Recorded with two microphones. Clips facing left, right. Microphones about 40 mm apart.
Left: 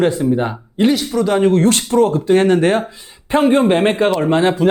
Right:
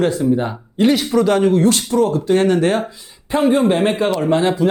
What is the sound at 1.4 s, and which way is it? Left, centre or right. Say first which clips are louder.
Speech: left 1 dB; left.